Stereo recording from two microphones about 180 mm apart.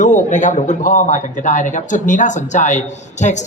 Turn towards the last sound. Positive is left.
turn(degrees=40)  # may be behind; listen again after turning